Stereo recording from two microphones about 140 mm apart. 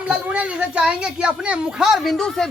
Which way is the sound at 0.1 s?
10° right (ahead or behind).